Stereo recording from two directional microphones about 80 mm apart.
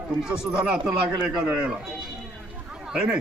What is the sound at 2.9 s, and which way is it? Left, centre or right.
Speech, centre.